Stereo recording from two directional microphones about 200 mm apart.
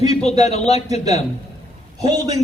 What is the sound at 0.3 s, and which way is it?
Speech, 35° left (ahead or behind).